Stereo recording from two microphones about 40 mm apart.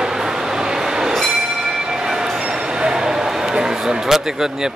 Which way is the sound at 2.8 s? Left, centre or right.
Centre.